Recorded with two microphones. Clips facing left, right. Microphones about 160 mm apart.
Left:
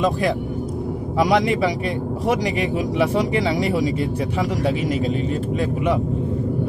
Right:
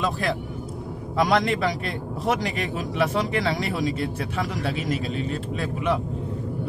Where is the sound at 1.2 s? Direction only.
15° left (ahead or behind).